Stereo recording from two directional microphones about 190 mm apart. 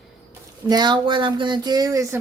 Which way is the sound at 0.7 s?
20° right (ahead or behind).